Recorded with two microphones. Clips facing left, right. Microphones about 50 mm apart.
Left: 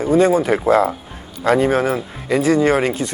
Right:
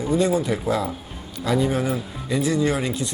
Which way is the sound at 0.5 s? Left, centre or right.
Left.